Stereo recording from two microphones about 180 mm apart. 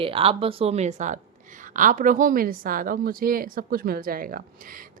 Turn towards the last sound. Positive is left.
turn(degrees=-50)  # may be behind; listen again after turning